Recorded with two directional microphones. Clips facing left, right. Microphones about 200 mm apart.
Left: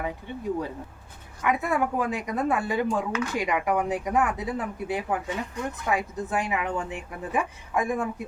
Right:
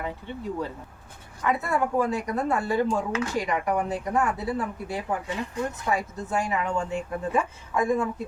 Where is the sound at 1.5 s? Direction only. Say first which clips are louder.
Even; 15° left (ahead or behind).